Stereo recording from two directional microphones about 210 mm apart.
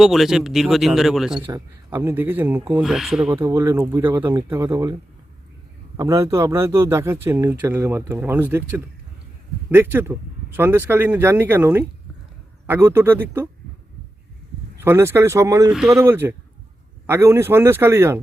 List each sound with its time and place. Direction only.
0.0 s speech: centre (ahead or behind)
1.5 s speech: 15° right (ahead or behind)
3.5 s speech: 15° right (ahead or behind)
6.0 s speech: 15° right (ahead or behind)
14.8 s speech: 10° right (ahead or behind)
15.7 s speech: centre (ahead or behind)